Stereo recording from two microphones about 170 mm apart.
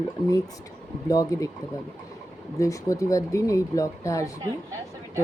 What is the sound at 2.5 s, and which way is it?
Speech, 20° left (ahead or behind).